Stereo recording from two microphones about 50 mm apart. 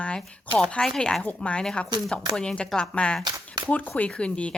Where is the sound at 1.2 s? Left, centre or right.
Left.